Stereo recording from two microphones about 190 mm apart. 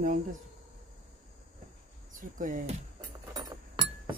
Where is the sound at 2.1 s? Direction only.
45° right (ahead or behind).